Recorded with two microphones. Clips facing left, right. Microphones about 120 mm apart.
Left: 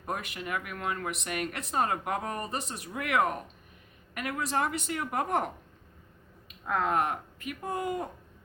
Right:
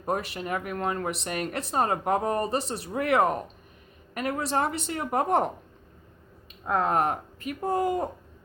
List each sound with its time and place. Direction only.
0.0 s speech: 30° right (ahead or behind)
6.5 s speech: 30° right (ahead or behind)